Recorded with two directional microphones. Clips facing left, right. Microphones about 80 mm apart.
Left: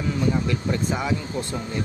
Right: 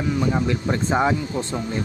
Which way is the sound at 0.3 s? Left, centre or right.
Right.